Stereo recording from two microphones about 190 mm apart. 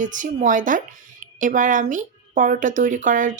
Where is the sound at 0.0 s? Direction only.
40° right (ahead or behind).